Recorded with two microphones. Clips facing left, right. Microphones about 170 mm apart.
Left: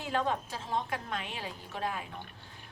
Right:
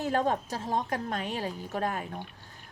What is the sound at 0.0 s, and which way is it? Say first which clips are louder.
Speech: right 4 dB; 45° right (ahead or behind).